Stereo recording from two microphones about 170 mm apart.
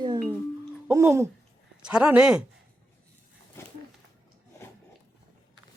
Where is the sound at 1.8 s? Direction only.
5° right (ahead or behind).